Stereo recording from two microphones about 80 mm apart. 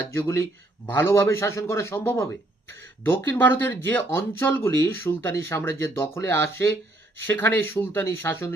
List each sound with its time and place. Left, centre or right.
0.1 s speech: left